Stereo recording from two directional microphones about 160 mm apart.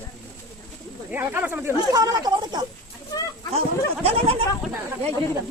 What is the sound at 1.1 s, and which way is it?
Speech, 10° right (ahead or behind).